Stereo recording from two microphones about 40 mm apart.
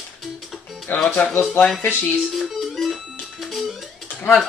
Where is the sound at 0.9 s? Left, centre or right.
Left.